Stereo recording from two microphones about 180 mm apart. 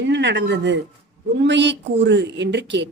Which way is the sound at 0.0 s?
80° right.